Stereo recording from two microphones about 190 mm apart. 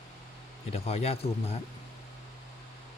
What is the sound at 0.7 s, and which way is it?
Speech, 35° left (ahead or behind).